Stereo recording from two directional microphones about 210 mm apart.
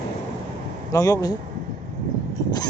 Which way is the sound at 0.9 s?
15° left (ahead or behind).